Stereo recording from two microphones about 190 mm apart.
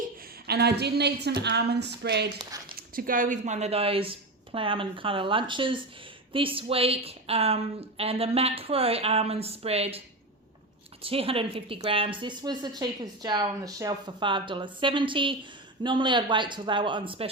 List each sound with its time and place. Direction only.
0.2 s a woman's voice: 55° right (ahead or behind)
2.4 s speech: 20° right (ahead or behind)
2.7 s a woman's voice: 50° right (ahead or behind); by 10.0 s 30° right (ahead or behind)
11.0 s a woman's voice: 30° right (ahead or behind)